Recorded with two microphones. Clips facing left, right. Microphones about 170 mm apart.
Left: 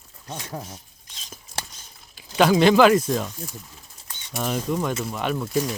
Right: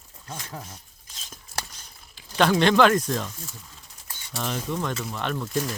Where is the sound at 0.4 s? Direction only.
35° left (ahead or behind).